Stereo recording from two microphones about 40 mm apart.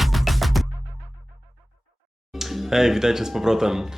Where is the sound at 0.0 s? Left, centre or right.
Centre.